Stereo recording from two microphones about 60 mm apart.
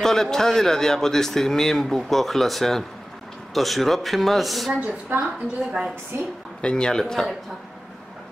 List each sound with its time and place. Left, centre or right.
0.0 s speech: centre
4.7 s a woman's voice: right
6.1 s a woman's voice: right
6.6 s speech: centre